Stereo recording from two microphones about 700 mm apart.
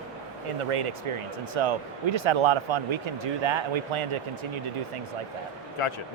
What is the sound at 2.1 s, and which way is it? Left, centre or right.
Speech, right.